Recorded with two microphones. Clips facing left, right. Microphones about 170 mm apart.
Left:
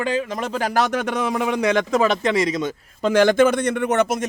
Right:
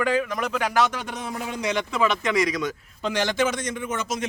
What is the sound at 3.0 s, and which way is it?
A man's voice, 50° left (ahead or behind).